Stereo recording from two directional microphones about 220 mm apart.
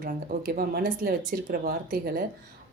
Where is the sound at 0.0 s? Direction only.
40° right (ahead or behind).